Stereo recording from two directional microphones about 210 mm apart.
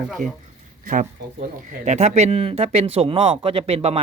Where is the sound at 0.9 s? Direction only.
40° right (ahead or behind).